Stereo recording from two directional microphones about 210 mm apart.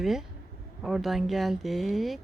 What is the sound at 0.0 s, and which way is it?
Speech, centre (ahead or behind).